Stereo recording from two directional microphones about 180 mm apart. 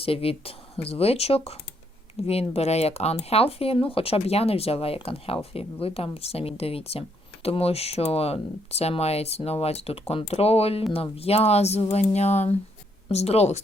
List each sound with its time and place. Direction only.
0.0 s speech: 30° left (ahead or behind)